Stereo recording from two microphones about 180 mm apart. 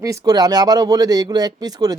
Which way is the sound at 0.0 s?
20° right (ahead or behind).